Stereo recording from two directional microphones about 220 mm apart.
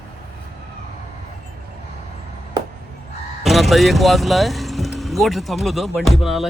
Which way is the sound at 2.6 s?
20° right (ahead or behind).